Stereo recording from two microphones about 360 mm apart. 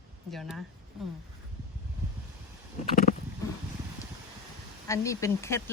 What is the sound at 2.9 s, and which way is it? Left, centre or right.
Wild animals, left.